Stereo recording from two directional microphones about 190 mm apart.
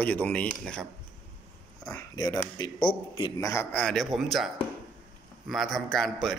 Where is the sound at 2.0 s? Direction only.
20° left (ahead or behind).